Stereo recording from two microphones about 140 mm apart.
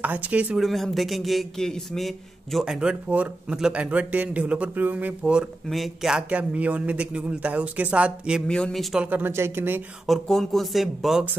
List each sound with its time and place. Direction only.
0.0 s speech: 10° right (ahead or behind)
8.5 s speech: 5° left (ahead or behind)
8.9 s speech: 10° right (ahead or behind)
10.0 s speech: centre (ahead or behind)